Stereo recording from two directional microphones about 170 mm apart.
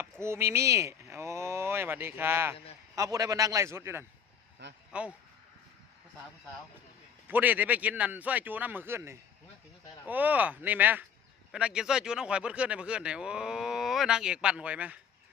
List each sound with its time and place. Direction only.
0.0 s a man's voice: 15° right (ahead or behind)
7.3 s a man's voice: 10° right (ahead or behind)